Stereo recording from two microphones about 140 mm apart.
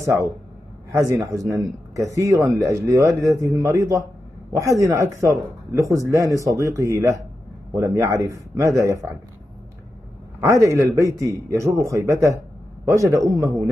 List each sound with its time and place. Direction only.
0.0 s a man's voice: 20° right (ahead or behind)
10.4 s a man's voice: 20° right (ahead or behind)